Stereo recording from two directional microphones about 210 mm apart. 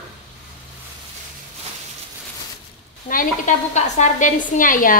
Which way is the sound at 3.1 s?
40° left (ahead or behind).